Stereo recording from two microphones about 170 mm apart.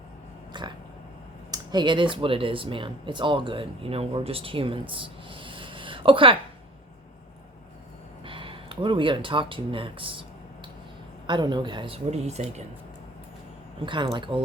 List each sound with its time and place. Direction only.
0.5 s a sound: 25° right (ahead or behind)
1.5 s speech: 25° right (ahead or behind)
8.2 s speech: 30° right (ahead or behind)
11.3 s speech: 25° right (ahead or behind)
13.8 s speech: 30° right (ahead or behind)